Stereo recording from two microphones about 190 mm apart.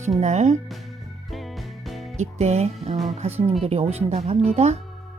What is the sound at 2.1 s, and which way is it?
Speech, 35° right (ahead or behind).